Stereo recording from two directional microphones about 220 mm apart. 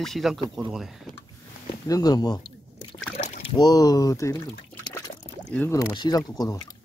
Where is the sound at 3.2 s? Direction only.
30° left (ahead or behind).